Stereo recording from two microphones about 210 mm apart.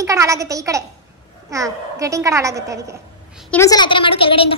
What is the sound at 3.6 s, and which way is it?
Speech, 20° left (ahead or behind).